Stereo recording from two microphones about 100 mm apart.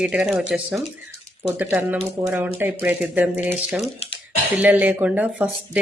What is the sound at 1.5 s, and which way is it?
Speech, 20° right (ahead or behind).